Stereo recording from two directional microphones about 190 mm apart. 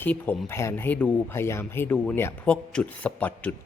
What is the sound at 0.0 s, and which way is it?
Speech, 10° left (ahead or behind).